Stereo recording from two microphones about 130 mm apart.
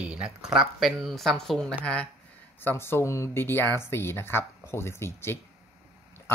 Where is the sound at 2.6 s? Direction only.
15° left (ahead or behind).